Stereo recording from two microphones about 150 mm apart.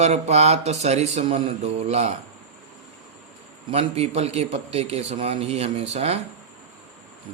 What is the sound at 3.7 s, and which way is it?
Speech, 40° right (ahead or behind).